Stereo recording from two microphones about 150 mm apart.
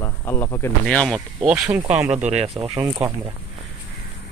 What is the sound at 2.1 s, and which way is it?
Speech, 45° right (ahead or behind).